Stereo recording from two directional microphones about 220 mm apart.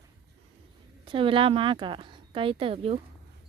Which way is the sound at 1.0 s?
25° right (ahead or behind).